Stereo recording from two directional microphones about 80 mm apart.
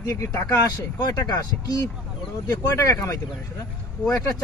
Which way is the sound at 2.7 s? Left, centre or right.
Left.